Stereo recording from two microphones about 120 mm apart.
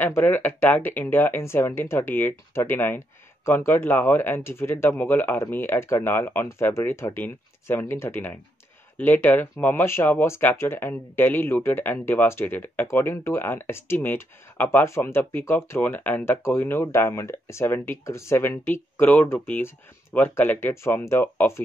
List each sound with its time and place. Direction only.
0.0 s speech: 15° left (ahead or behind)